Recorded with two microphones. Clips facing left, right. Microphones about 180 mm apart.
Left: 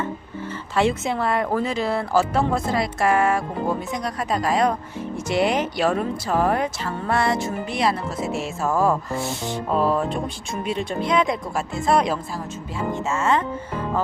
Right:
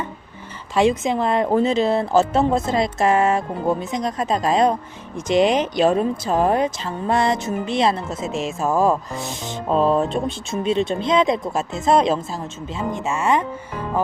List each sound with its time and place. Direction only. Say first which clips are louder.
0.8 s a woman's voice: right 3 dB; 15° right (ahead or behind)